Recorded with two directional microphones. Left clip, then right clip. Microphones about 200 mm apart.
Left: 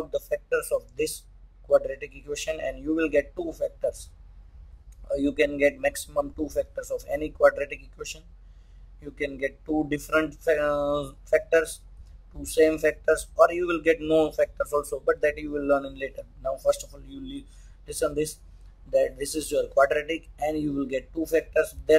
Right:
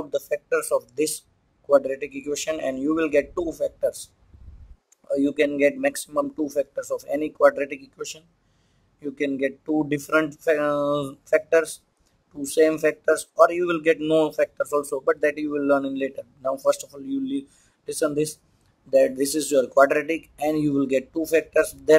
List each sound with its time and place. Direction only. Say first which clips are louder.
0.1 s a sound: right 3 dB; 10° right (ahead or behind)
0.6 s speech: right 6 dB; centre (ahead or behind)
5.0 s speech: right 3 dB; 15° right (ahead or behind)